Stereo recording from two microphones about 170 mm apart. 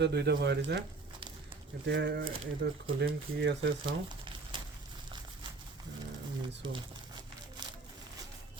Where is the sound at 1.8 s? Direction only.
90° right.